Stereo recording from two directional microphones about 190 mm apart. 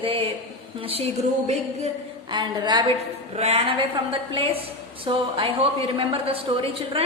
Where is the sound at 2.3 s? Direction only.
25° right (ahead or behind).